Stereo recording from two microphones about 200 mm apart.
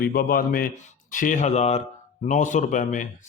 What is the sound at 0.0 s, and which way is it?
A man's voice, 50° left (ahead or behind).